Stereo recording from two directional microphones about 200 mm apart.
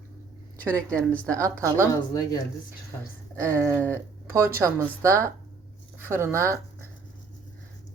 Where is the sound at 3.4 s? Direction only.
15° right (ahead or behind).